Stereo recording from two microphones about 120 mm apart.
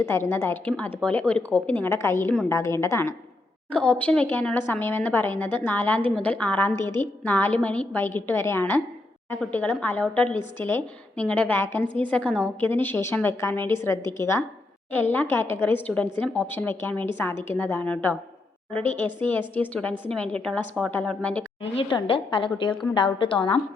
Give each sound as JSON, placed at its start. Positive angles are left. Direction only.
{"t": 0.0, "sound": "a woman's voice", "side_deg": 20}
{"t": 3.7, "sound": "a woman's voice", "side_deg": 10}
{"t": 21.6, "sound": "a woman's voice", "side_deg": 50}